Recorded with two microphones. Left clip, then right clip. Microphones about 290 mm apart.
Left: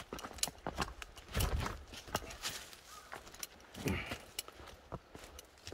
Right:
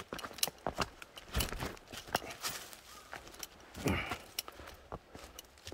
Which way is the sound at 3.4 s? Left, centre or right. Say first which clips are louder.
Right 4 dB; centre.